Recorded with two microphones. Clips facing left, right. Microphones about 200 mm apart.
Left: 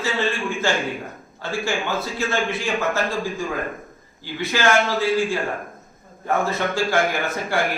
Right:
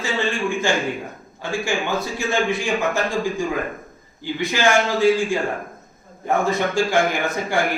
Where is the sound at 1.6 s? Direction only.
15° right (ahead or behind).